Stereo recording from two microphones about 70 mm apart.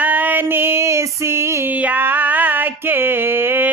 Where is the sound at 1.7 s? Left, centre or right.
Right.